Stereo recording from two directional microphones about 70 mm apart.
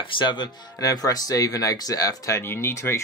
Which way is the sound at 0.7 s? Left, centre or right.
Left.